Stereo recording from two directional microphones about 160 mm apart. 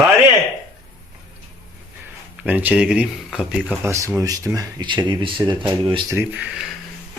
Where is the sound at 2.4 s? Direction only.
10° right (ahead or behind).